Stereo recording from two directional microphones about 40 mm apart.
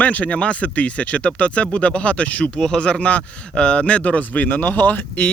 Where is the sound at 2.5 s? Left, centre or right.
Centre.